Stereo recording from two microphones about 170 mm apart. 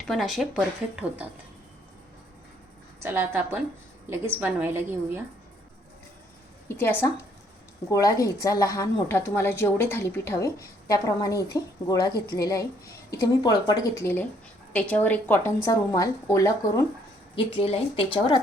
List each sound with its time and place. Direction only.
0.0 s speech: centre (ahead or behind)
3.0 s a woman's voice: 15° right (ahead or behind)
6.7 s a woman's voice: 15° left (ahead or behind)
17.3 s speech: 30° left (ahead or behind)